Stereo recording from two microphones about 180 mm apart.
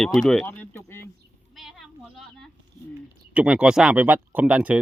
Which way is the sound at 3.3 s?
5° right (ahead or behind).